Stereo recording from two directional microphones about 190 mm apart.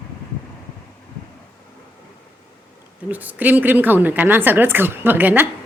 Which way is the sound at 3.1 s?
10° right (ahead or behind).